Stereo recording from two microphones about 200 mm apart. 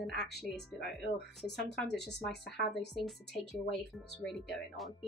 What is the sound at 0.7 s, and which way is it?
Speech, 55° left (ahead or behind).